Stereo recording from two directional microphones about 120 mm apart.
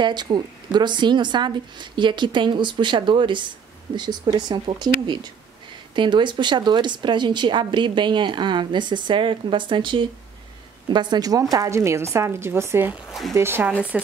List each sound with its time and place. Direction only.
0.0 s a woman's voice: 35° right (ahead or behind); by 14.0 s 15° right (ahead or behind)